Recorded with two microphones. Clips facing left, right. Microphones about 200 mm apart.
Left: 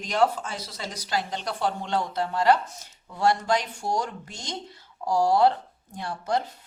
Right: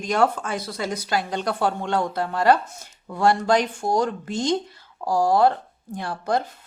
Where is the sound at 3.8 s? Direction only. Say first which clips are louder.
Right 6 dB; 55° right (ahead or behind).